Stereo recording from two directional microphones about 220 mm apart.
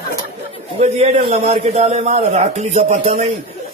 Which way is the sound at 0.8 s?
30° right (ahead or behind).